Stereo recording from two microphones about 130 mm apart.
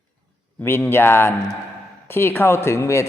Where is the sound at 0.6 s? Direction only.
15° left (ahead or behind).